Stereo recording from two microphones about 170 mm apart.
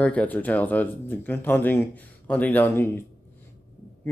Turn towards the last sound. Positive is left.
turn(degrees=15)  # may be behind; listen again after turning